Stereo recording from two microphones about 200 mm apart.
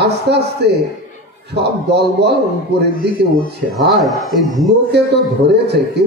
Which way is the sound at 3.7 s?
Centre (ahead or behind).